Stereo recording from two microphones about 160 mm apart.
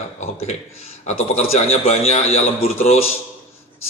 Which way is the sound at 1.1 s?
45° left (ahead or behind).